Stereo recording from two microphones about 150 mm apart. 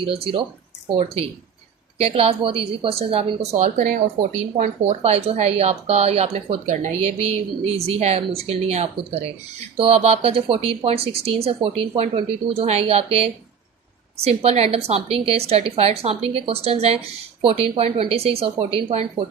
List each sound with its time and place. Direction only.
0.0 s speech: 40° right (ahead or behind); by 4.3 s 65° right (ahead or behind)
4.5 s speech: 45° right (ahead or behind)